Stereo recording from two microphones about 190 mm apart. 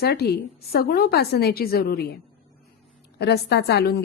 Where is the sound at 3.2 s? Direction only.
60° left (ahead or behind).